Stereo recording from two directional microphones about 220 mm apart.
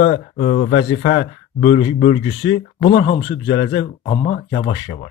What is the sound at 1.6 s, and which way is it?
Speech, 25° left (ahead or behind).